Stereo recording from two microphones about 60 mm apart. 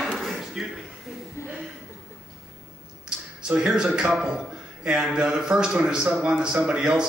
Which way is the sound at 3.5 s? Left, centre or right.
Centre.